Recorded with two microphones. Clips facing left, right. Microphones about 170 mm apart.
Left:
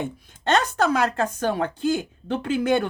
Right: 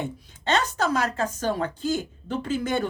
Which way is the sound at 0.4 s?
55° left (ahead or behind).